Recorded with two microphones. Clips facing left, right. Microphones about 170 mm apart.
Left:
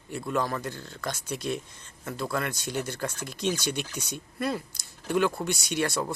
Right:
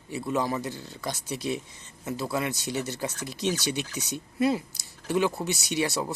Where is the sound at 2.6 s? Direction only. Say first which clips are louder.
Right 1 dB; 50° left (ahead or behind).